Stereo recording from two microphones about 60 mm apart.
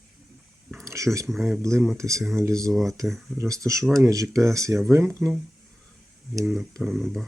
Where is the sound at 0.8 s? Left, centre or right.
Right.